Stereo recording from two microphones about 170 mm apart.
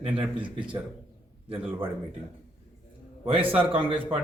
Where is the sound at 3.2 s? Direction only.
35° right (ahead or behind).